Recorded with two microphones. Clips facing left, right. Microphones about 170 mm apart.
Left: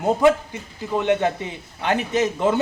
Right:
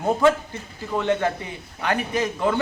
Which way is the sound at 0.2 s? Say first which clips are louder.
Left 2 dB; 20° left (ahead or behind).